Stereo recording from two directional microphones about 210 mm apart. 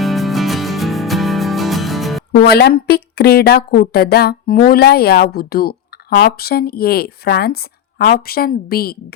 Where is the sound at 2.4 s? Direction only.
50° left (ahead or behind).